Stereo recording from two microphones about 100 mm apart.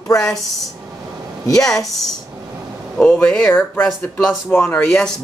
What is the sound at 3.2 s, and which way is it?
Speech, 10° left (ahead or behind).